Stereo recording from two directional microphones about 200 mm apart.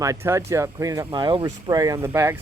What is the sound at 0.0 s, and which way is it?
Speech, 15° right (ahead or behind).